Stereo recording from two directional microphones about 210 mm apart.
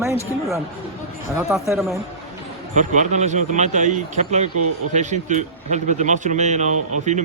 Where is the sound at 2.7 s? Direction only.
35° right (ahead or behind).